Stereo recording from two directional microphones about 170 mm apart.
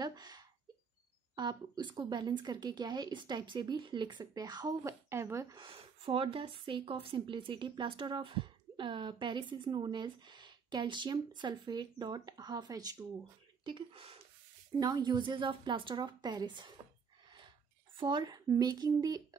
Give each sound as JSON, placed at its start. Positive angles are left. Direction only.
{"t": 0.0, "sound": "a sound", "side_deg": -25}
{"t": 1.3, "sound": "a woman's voice", "side_deg": -25}
{"t": 17.9, "sound": "a woman's voice", "side_deg": -25}